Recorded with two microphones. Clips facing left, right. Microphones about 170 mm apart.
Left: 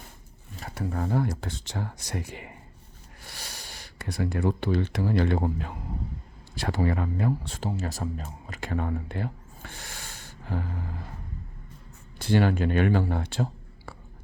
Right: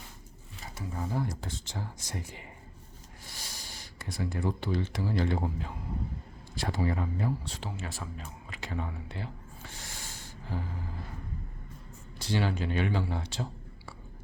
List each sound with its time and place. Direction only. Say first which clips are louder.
0.6 s speech: left 7 dB; 60° left (ahead or behind)
7.7 s speech: left 10 dB; 40° left (ahead or behind); by 10.6 s 65° left (ahead or behind)
12.2 s speech: left 7 dB; 55° left (ahead or behind)